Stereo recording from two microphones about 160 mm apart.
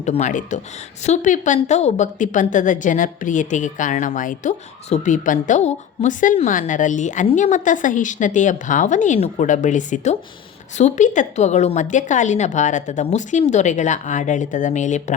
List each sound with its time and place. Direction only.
0.0 s a woman's voice: 45° left (ahead or behind)